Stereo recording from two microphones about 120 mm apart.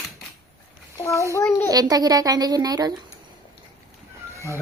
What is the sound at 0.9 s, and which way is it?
Speech, 25° left (ahead or behind).